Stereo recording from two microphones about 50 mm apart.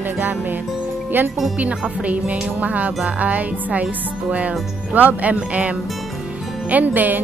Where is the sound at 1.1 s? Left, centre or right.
Right.